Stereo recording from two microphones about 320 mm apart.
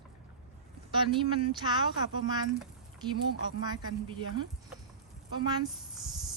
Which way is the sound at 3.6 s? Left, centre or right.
Centre.